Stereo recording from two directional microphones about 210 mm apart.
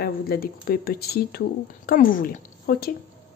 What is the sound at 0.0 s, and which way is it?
Speech, 45° left (ahead or behind).